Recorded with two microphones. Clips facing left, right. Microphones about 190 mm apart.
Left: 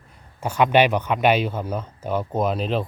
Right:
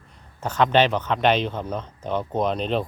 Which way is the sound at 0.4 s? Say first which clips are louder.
Left 2 dB; 10° left (ahead or behind).